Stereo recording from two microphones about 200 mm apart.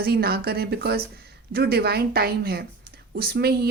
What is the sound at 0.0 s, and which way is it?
Speech, 50° right (ahead or behind).